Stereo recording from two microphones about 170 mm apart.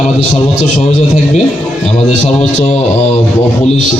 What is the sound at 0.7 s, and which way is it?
Speech, 50° left (ahead or behind).